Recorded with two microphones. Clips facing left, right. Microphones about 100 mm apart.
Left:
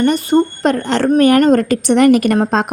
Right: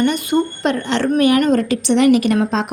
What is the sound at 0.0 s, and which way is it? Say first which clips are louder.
A woman's voice: left 4 dB; 40° left (ahead or behind).